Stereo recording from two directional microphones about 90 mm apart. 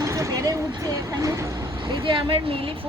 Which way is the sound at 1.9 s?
65° right (ahead or behind).